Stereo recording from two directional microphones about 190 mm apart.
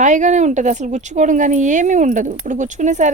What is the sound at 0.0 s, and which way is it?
Speech, 40° right (ahead or behind).